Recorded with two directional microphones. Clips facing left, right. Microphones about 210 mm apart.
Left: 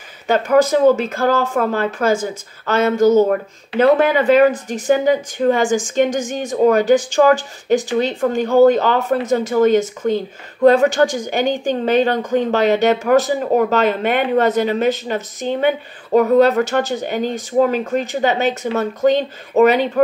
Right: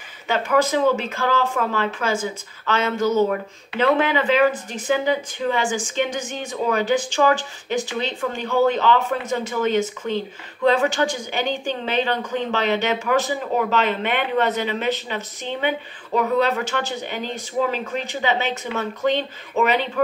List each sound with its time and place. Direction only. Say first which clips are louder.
0.3 s speech: left 6 dB; 45° left (ahead or behind)